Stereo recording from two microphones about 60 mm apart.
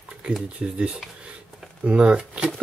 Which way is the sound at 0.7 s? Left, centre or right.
Centre.